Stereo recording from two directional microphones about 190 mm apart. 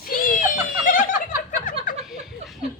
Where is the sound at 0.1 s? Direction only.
45° left (ahead or behind).